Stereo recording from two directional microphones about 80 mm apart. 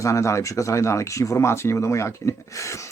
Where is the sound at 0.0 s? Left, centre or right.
Left.